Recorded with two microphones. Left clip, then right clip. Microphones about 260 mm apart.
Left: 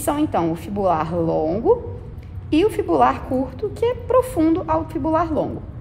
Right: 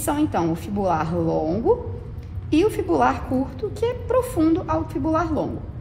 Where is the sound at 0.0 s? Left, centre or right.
Left.